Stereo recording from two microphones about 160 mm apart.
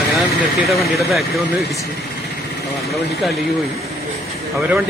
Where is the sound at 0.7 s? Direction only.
Centre (ahead or behind).